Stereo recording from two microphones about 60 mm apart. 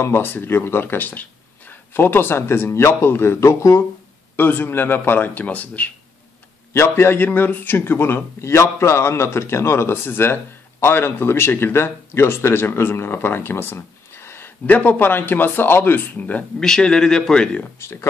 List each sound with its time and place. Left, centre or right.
0.0 s a man's voice: left
4.4 s speech: left
6.7 s a man's voice: left
7.2 s a man's voice: left
14.7 s speech: left
16.5 s a man's voice: centre